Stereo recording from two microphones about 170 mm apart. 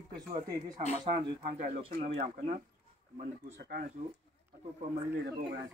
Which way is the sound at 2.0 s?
40° right (ahead or behind).